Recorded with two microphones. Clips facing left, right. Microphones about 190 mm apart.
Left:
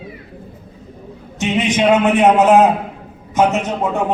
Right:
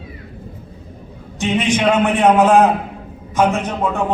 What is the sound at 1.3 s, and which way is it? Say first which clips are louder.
A man's voice: even; 20° left (ahead or behind).